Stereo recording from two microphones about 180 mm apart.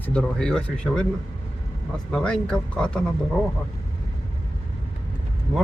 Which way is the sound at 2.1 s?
5° left (ahead or behind).